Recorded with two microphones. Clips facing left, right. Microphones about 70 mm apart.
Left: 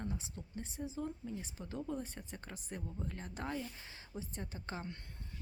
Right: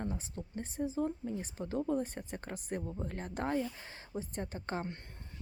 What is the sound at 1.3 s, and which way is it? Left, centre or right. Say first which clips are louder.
Speech: right 6 dB; right.